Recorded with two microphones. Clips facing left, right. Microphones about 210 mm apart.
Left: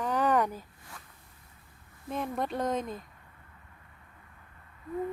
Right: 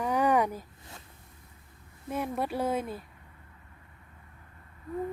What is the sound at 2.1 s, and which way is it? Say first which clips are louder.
Speech: right 1 dB; 10° right (ahead or behind).